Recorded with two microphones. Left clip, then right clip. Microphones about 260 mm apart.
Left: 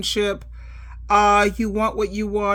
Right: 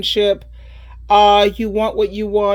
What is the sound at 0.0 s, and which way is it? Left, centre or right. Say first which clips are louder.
Speech: right 7 dB; centre.